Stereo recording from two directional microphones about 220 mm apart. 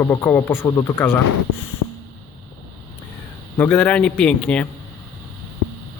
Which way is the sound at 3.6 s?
5° left (ahead or behind).